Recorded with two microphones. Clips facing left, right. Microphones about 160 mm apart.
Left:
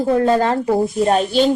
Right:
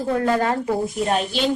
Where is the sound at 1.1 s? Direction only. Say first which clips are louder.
Left 6 dB; 40° left (ahead or behind).